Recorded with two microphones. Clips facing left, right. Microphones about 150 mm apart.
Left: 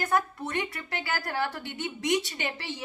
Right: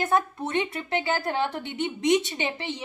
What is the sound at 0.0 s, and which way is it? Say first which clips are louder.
A woman's voice: right 3 dB; 25° right (ahead or behind).